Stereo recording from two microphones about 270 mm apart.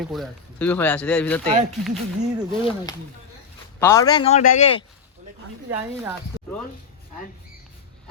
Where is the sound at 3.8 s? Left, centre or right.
Centre.